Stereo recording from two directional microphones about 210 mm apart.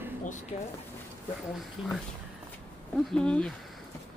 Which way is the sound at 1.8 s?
5° right (ahead or behind).